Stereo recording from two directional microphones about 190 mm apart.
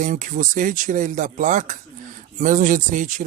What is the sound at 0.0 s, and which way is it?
Speech, 40° right (ahead or behind).